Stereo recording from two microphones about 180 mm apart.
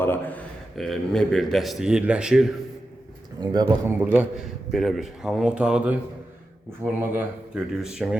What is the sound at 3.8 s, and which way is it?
A man's voice, 10° right (ahead or behind).